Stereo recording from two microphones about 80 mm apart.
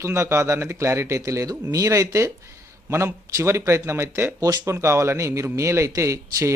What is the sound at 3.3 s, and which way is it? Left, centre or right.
A man's voice, right.